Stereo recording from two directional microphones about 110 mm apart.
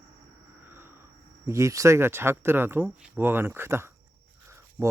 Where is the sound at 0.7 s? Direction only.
20° right (ahead or behind).